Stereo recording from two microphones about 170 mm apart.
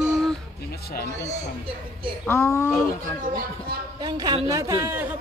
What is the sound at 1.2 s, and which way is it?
Speech, 35° right (ahead or behind).